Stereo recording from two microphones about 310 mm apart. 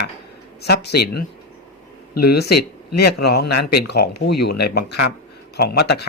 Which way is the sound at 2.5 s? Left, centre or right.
Left.